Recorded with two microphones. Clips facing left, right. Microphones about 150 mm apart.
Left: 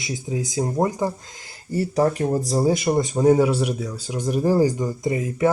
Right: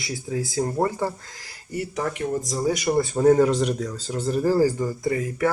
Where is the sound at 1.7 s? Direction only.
35° left (ahead or behind).